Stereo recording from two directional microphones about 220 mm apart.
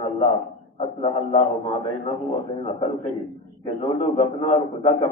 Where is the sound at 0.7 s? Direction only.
25° left (ahead or behind).